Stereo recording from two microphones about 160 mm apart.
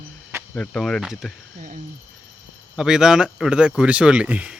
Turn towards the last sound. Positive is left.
turn(degrees=-10)  # may be behind; listen again after turning